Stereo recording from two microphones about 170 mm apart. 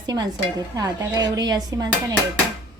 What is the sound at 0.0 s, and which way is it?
Stir, 25° right (ahead or behind).